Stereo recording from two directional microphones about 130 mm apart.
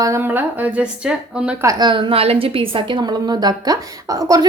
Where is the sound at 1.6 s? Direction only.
30° right (ahead or behind).